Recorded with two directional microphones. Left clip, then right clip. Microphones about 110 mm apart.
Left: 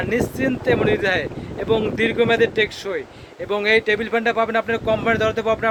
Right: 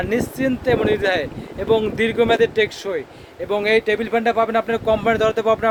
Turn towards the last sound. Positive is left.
turn(degrees=-45)  # may be behind; listen again after turning